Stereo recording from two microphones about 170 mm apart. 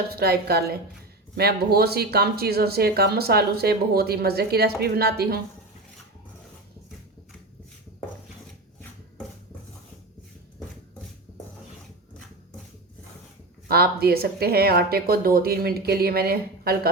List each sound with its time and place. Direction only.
0.1 s speech: 65° right (ahead or behind)
13.7 s speech: 65° right (ahead or behind)